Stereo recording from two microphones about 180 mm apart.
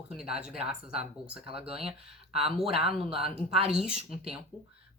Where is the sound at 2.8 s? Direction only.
30° right (ahead or behind).